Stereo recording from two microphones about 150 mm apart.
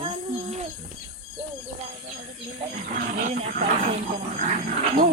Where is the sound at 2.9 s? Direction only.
60° right (ahead or behind).